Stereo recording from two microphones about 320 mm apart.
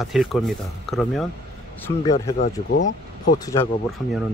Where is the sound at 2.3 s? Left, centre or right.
Left.